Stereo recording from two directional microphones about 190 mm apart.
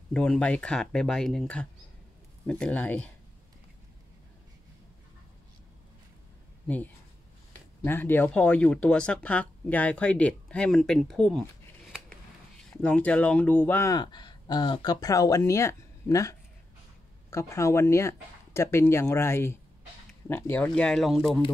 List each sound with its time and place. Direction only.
0.1 s speech: 5° left (ahead or behind)
7.8 s speech: 10° left (ahead or behind)